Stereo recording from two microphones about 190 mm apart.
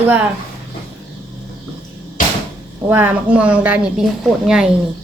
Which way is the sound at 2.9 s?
10° right (ahead or behind).